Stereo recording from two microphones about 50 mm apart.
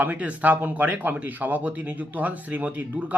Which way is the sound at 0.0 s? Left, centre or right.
Right.